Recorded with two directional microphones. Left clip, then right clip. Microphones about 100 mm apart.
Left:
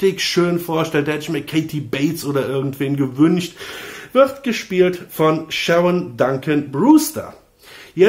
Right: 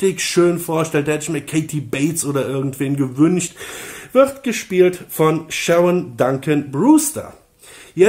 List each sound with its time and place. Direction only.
0.0 s speech: 35° right (ahead or behind)
4.1 s speech: 40° right (ahead or behind)